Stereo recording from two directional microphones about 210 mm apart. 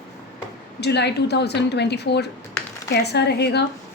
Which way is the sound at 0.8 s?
55° left (ahead or behind).